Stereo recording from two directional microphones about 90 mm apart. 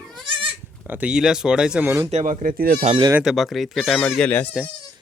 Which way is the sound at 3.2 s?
Centre (ahead or behind).